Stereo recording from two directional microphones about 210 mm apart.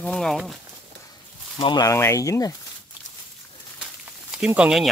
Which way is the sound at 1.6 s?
20° left (ahead or behind).